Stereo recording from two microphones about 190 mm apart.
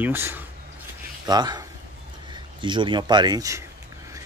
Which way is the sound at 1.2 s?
20° right (ahead or behind).